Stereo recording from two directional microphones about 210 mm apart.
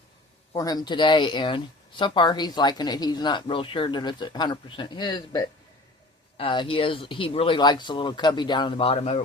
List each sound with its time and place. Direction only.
0.5 s speech: 15° left (ahead or behind)